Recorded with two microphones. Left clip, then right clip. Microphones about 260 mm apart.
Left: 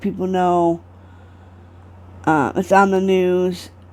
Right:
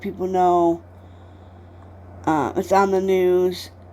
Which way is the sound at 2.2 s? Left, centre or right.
Left.